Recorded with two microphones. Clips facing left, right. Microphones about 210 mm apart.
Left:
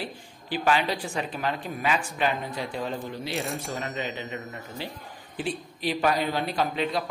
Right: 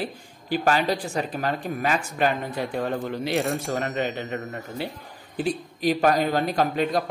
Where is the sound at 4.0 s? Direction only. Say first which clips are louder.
Right 6 dB; 60° right (ahead or behind).